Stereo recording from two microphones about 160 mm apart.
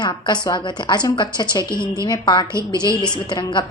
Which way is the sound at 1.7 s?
20° right (ahead or behind).